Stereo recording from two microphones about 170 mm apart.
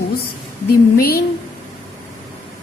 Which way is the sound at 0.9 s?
60° left (ahead or behind).